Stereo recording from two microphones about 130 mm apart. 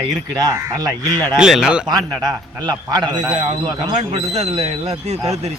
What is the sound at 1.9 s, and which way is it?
A man's voice, 30° right (ahead or behind).